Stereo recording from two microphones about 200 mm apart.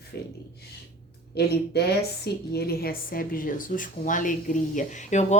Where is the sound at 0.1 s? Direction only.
55° left (ahead or behind).